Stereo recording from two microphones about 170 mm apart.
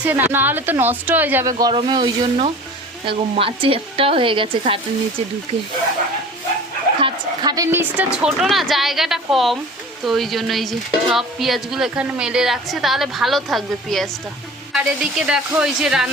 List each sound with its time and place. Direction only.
0.0 s a woman's voice: 10° right (ahead or behind); by 4.8 s 30° right (ahead or behind)
7.0 s a woman's voice: 20° right (ahead or behind); by 16.0 s 5° right (ahead or behind)